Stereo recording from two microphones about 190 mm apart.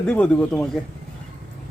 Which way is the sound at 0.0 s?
5° left (ahead or behind).